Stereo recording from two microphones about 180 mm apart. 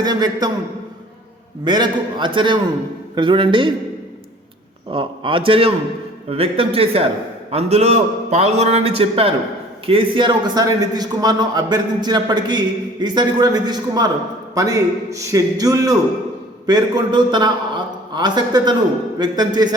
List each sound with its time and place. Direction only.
0.0 s a man's voice: 20° right (ahead or behind)
1.6 s a man's voice: 25° right (ahead or behind)
4.9 s a man's voice: 30° right (ahead or behind)